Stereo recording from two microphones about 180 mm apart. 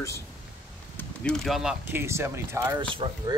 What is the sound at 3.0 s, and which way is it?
Speech, 30° right (ahead or behind).